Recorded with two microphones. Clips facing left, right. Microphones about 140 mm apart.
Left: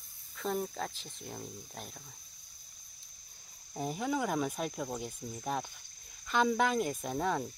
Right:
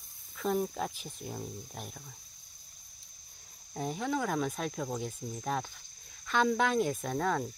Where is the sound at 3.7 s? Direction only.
5° left (ahead or behind).